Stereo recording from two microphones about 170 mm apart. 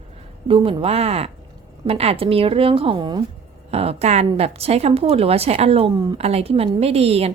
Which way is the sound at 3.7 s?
35° right (ahead or behind).